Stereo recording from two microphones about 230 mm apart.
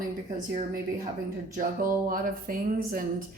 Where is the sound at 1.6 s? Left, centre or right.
Right.